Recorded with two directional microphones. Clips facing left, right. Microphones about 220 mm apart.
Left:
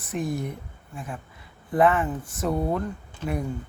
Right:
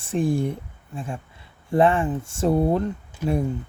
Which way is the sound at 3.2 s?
10° right (ahead or behind).